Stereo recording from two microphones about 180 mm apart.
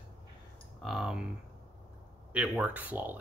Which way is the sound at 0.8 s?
Centre (ahead or behind).